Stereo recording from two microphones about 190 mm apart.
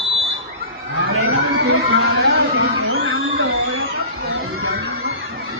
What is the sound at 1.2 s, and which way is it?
Music, 90° right.